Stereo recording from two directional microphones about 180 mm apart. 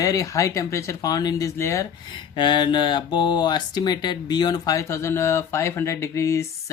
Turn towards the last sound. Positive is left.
turn(degrees=15)  # may be behind; listen again after turning